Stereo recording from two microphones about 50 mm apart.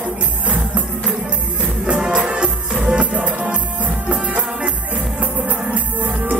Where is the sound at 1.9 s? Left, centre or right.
Centre.